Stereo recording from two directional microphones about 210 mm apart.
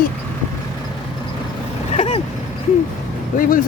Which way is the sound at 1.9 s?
30° left (ahead or behind).